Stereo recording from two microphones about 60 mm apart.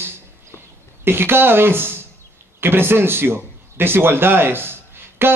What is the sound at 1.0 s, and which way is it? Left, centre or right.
A man's voice, right.